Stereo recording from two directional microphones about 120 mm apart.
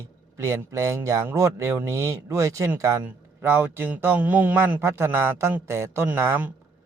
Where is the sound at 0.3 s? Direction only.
25° right (ahead or behind).